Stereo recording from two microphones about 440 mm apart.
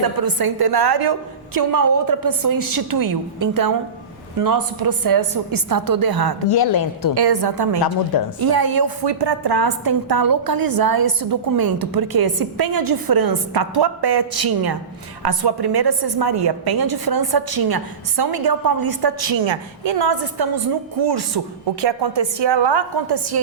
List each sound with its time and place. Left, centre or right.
0.0 s a woman's voice: right
6.5 s a woman's voice: left
7.1 s a woman's voice: right
19.5 s a woman's voice: right
21.8 s a woman's voice: right